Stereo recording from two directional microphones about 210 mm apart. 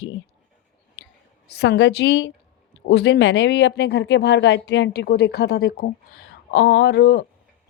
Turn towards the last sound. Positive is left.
turn(degrees=50)  # may be behind; listen again after turning